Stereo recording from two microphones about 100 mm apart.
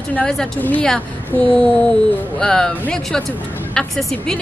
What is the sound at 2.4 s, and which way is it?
Speech, 5° left (ahead or behind).